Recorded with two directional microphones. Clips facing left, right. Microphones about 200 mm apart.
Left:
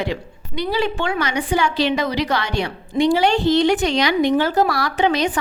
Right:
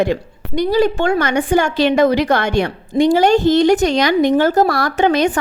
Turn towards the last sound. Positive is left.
turn(degrees=-50)  # may be behind; listen again after turning